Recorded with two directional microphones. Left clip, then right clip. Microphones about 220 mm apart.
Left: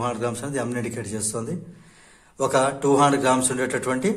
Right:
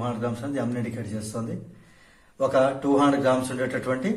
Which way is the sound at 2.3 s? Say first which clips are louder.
Even; 45° left (ahead or behind).